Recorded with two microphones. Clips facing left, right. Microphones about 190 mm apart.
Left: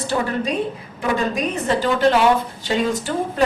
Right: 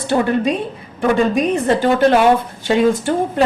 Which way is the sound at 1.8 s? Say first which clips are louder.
Right 2 dB; 55° right (ahead or behind).